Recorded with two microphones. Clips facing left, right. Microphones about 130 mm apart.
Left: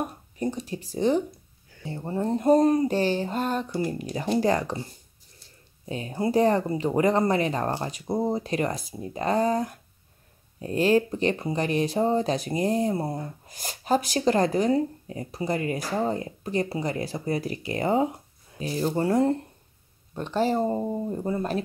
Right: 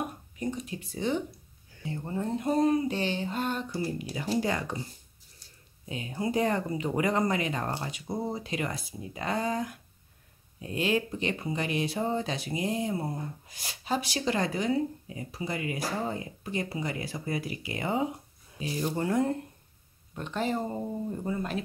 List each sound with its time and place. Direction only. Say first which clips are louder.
0.4 s speech: left 4 dB; 35° left (ahead or behind)
5.9 s speech: left 5 dB; 35° left (ahead or behind)